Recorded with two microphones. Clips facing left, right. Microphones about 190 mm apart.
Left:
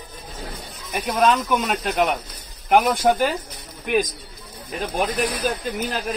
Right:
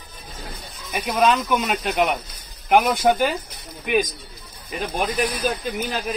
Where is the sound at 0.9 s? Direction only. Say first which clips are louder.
Even; 5° right (ahead or behind).